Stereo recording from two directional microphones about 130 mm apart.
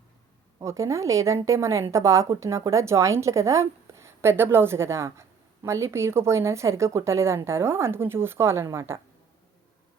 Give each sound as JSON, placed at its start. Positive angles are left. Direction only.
{"t": 0.6, "sound": "a woman's voice", "side_deg": -20}